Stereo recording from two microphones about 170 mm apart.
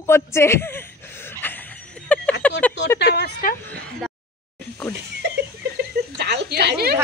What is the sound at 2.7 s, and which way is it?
Speech, 90° left.